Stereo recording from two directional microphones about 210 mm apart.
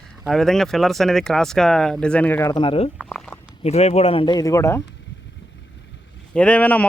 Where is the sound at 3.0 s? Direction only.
5° left (ahead or behind).